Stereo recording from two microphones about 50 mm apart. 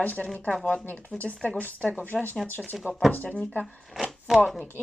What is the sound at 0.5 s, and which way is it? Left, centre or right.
Speech, centre.